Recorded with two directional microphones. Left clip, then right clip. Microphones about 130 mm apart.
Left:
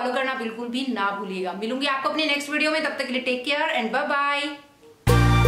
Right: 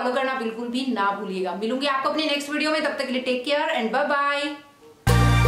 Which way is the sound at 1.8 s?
Centre (ahead or behind).